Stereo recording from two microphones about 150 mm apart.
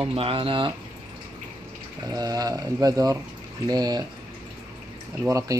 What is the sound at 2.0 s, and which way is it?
Speech, 25° right (ahead or behind).